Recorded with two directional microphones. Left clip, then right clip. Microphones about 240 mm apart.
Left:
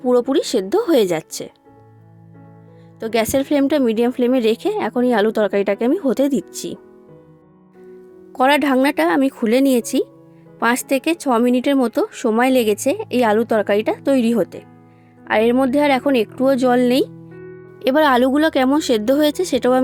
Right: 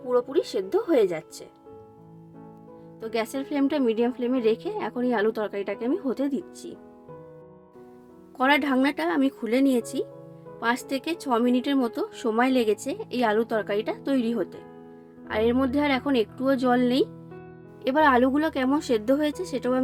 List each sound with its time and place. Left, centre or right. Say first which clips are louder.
0.1 s speech: left 8 dB; left
3.0 s speech: left 11 dB; left
8.4 s speech: left 7 dB; left